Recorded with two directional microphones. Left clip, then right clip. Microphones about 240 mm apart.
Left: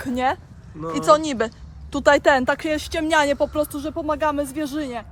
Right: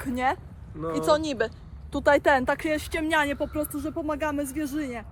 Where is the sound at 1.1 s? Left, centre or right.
Left.